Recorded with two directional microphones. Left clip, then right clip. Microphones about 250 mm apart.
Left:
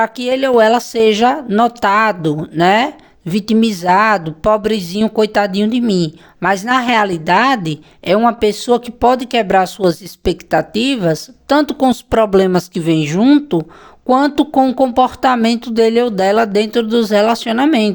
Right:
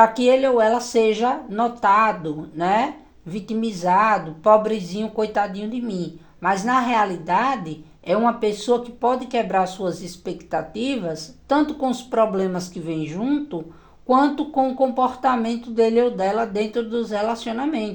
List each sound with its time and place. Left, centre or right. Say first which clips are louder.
0.0 s speech: even; left